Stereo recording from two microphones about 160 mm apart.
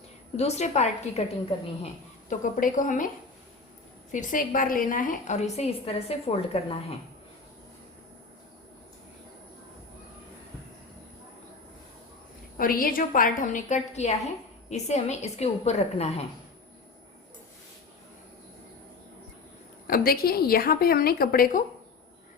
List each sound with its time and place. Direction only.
0.3 s a woman's voice: 45° left (ahead or behind)
2.3 s a woman's voice: 55° left (ahead or behind)
4.1 s a woman's voice: 55° left (ahead or behind); by 6.7 s 40° left (ahead or behind)
12.5 s a woman's voice: 65° left (ahead or behind); by 16.2 s 40° left (ahead or behind)
19.9 s a woman's voice: 70° left (ahead or behind)